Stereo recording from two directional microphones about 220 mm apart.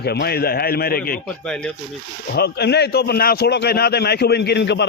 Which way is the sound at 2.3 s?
50° left (ahead or behind).